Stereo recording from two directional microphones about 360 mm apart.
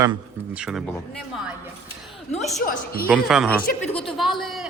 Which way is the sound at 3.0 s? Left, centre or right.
Centre.